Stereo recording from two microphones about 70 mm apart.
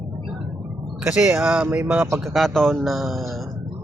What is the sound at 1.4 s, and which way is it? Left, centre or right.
Speech, centre.